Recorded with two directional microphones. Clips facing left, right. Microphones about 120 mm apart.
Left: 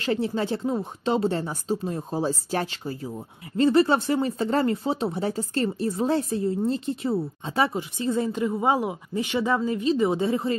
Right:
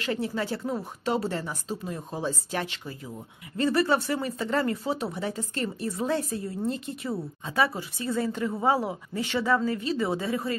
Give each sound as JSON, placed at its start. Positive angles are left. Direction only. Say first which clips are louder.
{"t": 0.0, "sound": "speech", "louder": "left 4 dB", "side_deg": 30}